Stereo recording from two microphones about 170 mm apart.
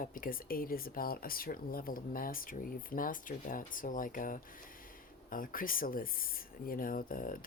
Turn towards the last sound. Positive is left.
turn(degrees=55)  # may be behind; listen again after turning